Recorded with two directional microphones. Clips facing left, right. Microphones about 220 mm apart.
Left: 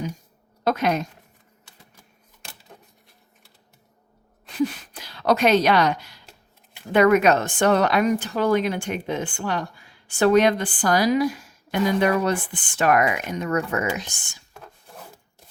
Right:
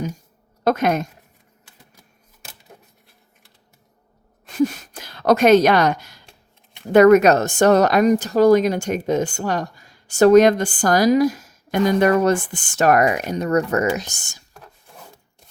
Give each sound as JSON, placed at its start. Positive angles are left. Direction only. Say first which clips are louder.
{"t": 0.6, "sound": "a woman's voice", "louder": "right 4 dB", "side_deg": -50}
{"t": 4.5, "sound": "a woman's voice", "louder": "right 4 dB", "side_deg": -45}
{"t": 14.5, "sound": "wood", "louder": "left 2 dB", "side_deg": 0}